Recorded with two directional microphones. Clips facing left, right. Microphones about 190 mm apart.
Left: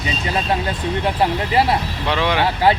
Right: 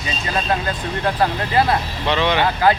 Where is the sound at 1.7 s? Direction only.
5° left (ahead or behind).